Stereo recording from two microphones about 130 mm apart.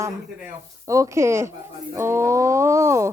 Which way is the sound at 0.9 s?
25° right (ahead or behind).